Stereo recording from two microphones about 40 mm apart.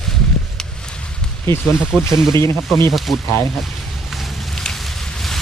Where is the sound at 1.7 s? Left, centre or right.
Centre.